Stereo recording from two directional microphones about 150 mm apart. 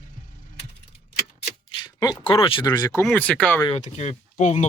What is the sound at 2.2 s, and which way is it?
Speech, 35° left (ahead or behind).